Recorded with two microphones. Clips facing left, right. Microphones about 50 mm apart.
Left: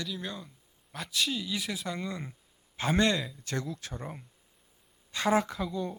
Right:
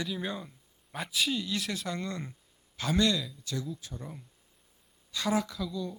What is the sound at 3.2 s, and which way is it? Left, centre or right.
Speech, left.